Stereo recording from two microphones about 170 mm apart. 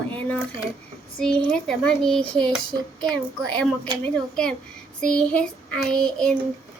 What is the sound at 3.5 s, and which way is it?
Child singing, 5° left (ahead or behind).